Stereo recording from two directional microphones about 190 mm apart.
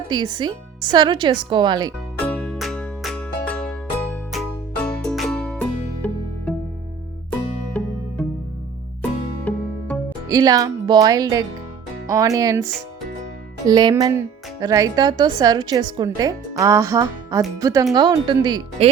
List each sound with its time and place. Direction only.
0.1 s a woman's voice: 25° right (ahead or behind)
2.1 s music: 10° left (ahead or behind)
7.8 s music: 5° left (ahead or behind)
9.0 s music: 10° left (ahead or behind)
10.2 s a woman's voice: 20° right (ahead or behind)